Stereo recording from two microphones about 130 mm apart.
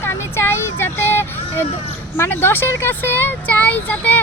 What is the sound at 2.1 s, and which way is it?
Speech, 20° left (ahead or behind).